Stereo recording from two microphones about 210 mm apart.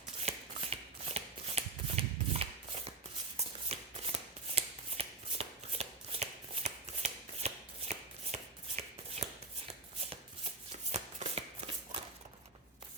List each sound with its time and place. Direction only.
0.3 s shuffling cards: 30° right (ahead or behind)
10.9 s shuffling cards: 30° right (ahead or behind)